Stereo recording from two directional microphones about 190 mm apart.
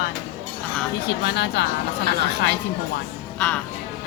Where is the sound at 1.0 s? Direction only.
60° left (ahead or behind).